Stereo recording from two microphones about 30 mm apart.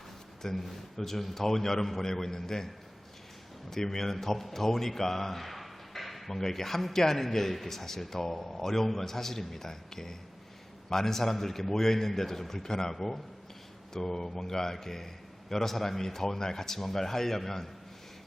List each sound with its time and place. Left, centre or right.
0.4 s a man's voice: centre
3.7 s a man's voice: centre